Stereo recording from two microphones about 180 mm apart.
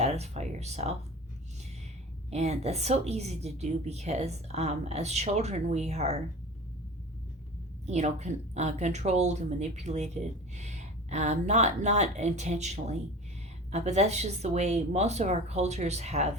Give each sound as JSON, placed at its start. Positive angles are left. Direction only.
{"t": 0.0, "sound": "speech", "side_deg": -35}
{"t": 2.3, "sound": "speech", "side_deg": -35}
{"t": 7.9, "sound": "speech", "side_deg": -40}